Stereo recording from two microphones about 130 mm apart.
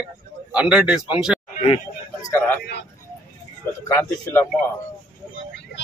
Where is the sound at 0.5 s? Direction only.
5° right (ahead or behind).